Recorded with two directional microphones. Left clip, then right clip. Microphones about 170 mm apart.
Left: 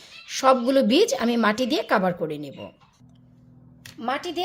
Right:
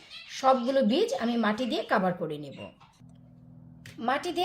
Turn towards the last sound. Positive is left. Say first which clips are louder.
# left 1 dB
turn(degrees=10)  # may be behind; listen again after turning